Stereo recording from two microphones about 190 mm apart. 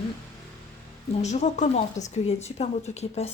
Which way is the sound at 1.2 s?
35° left (ahead or behind).